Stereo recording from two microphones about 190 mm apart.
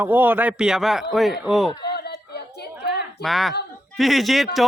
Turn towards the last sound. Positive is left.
turn(degrees=0)  # may be behind; listen again after turning